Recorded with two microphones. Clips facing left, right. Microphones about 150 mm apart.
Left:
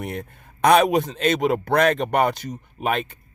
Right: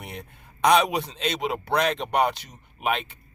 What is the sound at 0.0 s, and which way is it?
Speech, 50° left (ahead or behind).